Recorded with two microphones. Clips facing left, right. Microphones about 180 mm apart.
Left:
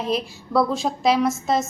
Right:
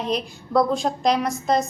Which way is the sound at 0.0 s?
5° left (ahead or behind).